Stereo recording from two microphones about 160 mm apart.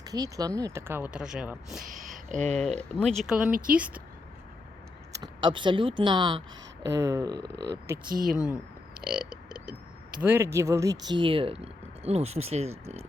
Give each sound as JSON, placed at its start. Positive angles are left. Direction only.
{"t": 0.0, "sound": "speech", "side_deg": -25}
{"t": 1.8, "sound": "a sound", "side_deg": -55}
{"t": 2.6, "sound": "speech", "side_deg": 5}
{"t": 5.1, "sound": "speech", "side_deg": -25}
{"t": 6.8, "sound": "speech", "side_deg": -20}
{"t": 7.3, "sound": "speech", "side_deg": -90}
{"t": 8.1, "sound": "speech", "side_deg": -60}
{"t": 10.2, "sound": "speech", "side_deg": -15}